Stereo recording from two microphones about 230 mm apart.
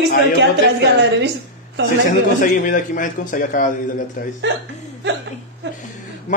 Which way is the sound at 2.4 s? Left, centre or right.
Left.